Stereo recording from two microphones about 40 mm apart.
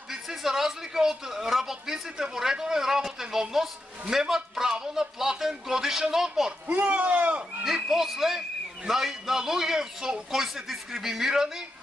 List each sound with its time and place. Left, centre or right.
0.1 s a man's voice: centre
6.7 s a man's voice: right
7.6 s speech: centre